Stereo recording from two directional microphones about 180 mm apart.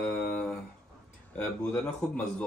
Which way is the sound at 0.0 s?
5° left (ahead or behind).